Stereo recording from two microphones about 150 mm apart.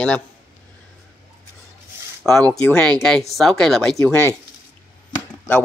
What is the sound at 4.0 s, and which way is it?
Speech, 15° left (ahead or behind).